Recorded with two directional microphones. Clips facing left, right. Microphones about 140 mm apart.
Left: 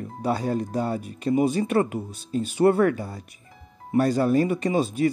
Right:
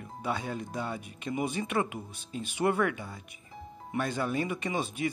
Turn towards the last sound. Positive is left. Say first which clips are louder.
# left 9 dB
turn(degrees=35)  # may be behind; listen again after turning